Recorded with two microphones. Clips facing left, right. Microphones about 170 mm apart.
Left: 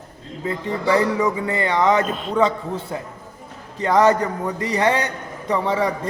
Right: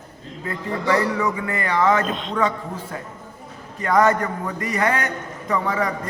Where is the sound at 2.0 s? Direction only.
5° left (ahead or behind).